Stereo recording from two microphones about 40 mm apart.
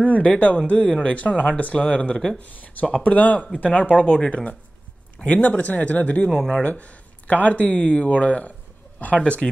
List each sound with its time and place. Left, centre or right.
0.0 s speech: left
2.4 s speech: left